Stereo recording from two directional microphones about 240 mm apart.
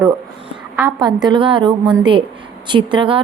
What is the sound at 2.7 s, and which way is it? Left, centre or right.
Speech, centre.